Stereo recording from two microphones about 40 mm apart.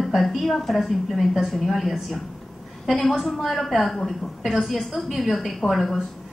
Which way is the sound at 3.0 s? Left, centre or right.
Centre.